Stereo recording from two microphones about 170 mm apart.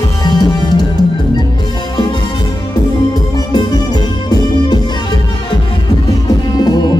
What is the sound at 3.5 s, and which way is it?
Music, 25° left (ahead or behind).